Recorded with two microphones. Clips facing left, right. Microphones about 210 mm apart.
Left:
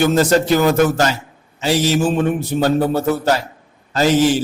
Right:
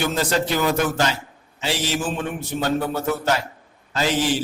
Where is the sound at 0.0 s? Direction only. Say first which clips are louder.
Left 8 dB; 45° left (ahead or behind).